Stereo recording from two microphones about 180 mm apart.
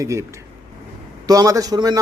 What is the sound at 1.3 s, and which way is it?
Speech, 20° right (ahead or behind).